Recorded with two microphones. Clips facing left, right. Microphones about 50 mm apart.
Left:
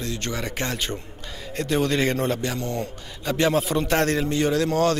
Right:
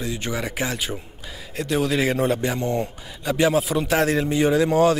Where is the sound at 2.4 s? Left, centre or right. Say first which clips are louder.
Right 4 dB; centre.